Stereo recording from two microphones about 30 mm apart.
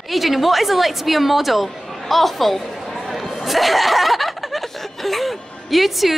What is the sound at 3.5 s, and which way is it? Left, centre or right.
Snicker, centre.